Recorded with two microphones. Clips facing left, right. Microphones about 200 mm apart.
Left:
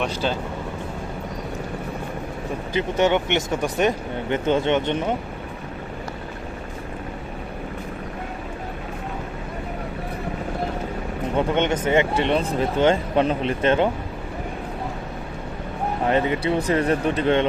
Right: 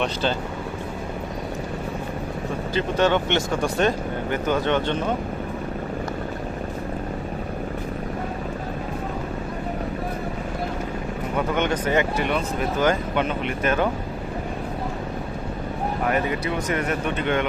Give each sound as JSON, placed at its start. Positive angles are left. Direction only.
{"t": 0.0, "sound": "speech", "side_deg": 5}
{"t": 2.7, "sound": "speech", "side_deg": 15}
{"t": 11.3, "sound": "speech", "side_deg": 25}
{"t": 16.0, "sound": "speech", "side_deg": 25}